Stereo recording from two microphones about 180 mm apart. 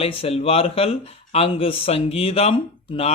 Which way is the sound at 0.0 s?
30° left (ahead or behind).